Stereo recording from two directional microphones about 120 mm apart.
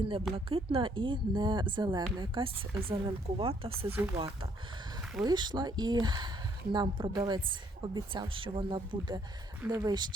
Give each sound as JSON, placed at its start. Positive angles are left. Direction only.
{"t": 0.0, "sound": "speech", "side_deg": -50}
{"t": 3.9, "sound": "speech", "side_deg": -20}
{"t": 5.2, "sound": "speech", "side_deg": -40}